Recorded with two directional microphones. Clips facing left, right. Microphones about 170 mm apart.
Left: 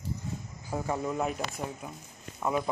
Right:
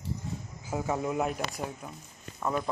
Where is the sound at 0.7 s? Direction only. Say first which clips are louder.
Right 1 dB; 5° right (ahead or behind); by 2.6 s 10° left (ahead or behind).